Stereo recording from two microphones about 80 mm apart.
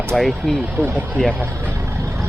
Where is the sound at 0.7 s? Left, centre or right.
Centre.